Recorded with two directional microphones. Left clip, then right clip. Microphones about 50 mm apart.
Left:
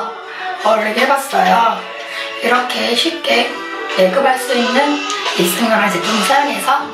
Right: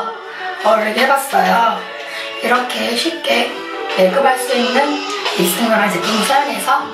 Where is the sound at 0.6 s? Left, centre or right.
Right.